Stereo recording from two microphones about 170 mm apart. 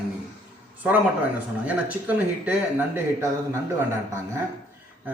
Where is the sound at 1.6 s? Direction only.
10° right (ahead or behind).